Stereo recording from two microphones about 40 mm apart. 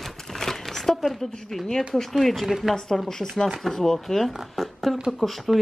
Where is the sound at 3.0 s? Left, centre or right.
Centre.